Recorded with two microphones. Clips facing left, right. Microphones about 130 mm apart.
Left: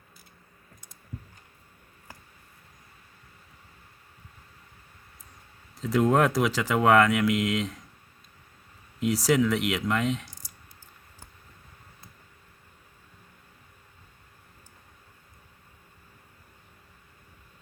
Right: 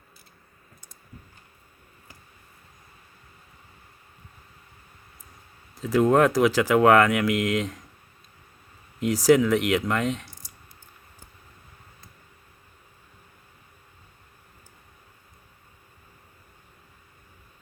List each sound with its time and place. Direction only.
5.7 s speech: centre (ahead or behind)
9.0 s speech: centre (ahead or behind)